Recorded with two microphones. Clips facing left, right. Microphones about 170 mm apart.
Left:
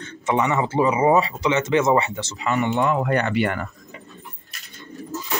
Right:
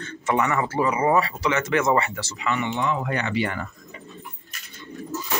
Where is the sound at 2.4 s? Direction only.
40° left (ahead or behind).